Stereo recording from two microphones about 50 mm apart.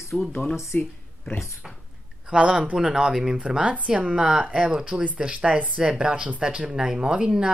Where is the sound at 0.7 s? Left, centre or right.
Left.